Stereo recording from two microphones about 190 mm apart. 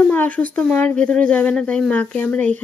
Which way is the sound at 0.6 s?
5° left (ahead or behind).